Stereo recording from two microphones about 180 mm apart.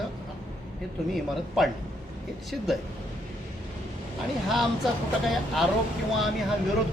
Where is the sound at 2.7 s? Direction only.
Centre (ahead or behind).